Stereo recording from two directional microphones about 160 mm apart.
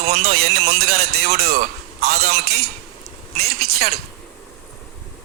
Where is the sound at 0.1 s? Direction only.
70° right (ahead or behind).